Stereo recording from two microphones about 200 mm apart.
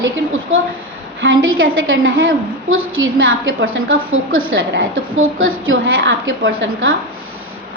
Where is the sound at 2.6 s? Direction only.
90° right.